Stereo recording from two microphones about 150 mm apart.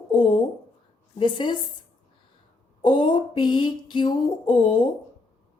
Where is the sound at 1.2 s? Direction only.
30° left (ahead or behind).